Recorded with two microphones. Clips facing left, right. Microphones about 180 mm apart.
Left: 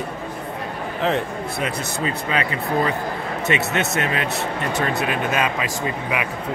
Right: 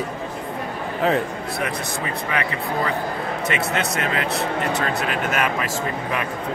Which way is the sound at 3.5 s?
20° left (ahead or behind).